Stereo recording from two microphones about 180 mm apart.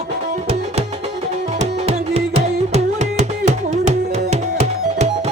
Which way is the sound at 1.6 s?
35° right (ahead or behind).